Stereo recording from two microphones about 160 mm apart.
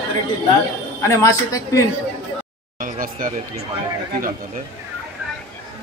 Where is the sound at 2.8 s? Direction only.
60° right (ahead or behind).